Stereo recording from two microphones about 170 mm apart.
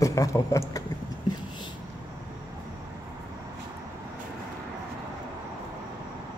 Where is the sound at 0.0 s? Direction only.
20° left (ahead or behind).